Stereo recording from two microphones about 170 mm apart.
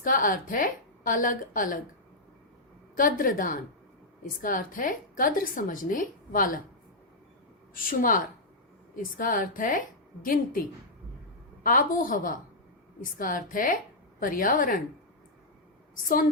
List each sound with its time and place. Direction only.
0.0 s a woman's voice: 50° left (ahead or behind)
2.9 s a woman's voice: 50° left (ahead or behind)
7.7 s a woman's voice: 55° left (ahead or behind)
11.6 s a woman's voice: 55° left (ahead or behind)